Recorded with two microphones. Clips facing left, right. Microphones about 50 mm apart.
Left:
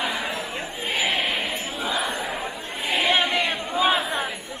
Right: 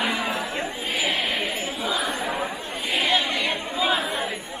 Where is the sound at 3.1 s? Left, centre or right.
Left.